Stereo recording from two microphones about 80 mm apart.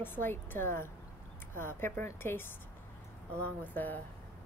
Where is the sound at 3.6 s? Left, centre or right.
Left.